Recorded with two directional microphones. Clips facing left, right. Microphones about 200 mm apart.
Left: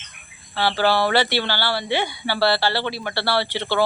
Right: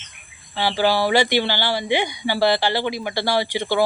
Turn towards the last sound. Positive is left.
turn(degrees=-10)  # may be behind; listen again after turning